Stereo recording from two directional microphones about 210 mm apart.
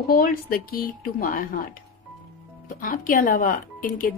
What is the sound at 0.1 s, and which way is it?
Speech, 45° left (ahead or behind).